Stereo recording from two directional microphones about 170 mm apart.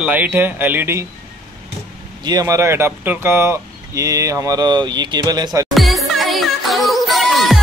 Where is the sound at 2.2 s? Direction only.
20° right (ahead or behind).